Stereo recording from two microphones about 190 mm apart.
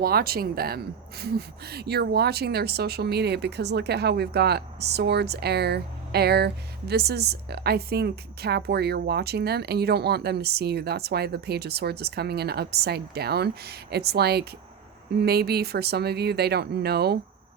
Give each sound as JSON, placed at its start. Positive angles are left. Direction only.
{"t": 0.0, "sound": "speech", "side_deg": -55}